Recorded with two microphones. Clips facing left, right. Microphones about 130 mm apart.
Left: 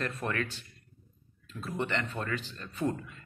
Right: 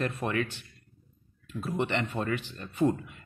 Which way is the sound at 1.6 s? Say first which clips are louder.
Right 3 dB; 15° right (ahead or behind).